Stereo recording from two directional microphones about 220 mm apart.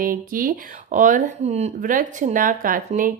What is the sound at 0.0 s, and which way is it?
Speech, 40° right (ahead or behind).